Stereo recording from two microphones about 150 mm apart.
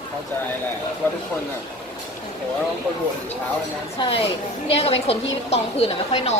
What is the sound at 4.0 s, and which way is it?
A woman's voice, 40° left (ahead or behind).